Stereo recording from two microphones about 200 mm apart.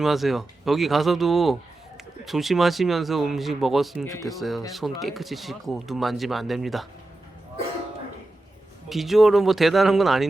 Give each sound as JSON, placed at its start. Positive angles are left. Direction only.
{"t": 0.0, "sound": "speech", "side_deg": 0}
{"t": 4.0, "sound": "speech", "side_deg": 15}
{"t": 4.3, "sound": "speech", "side_deg": 0}
{"t": 8.9, "sound": "speech", "side_deg": 0}